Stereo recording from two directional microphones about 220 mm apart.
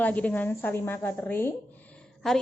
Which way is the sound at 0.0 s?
5° left (ahead or behind).